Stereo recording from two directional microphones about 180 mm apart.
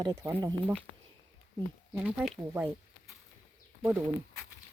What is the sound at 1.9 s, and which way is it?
Speech, 10° right (ahead or behind).